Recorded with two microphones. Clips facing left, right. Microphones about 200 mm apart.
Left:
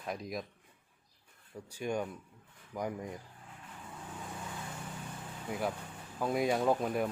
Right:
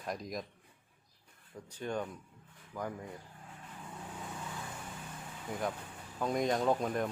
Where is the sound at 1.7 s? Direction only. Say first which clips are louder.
Left 2 dB; 10° left (ahead or behind).